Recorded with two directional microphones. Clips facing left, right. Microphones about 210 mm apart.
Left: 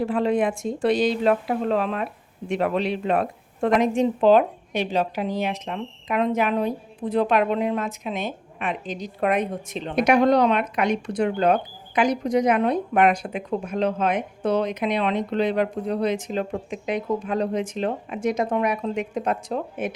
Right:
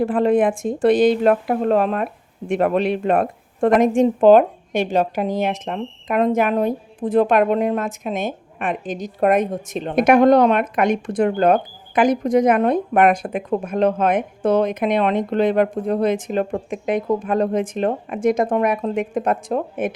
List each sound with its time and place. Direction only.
0.0 s speech: 50° right (ahead or behind)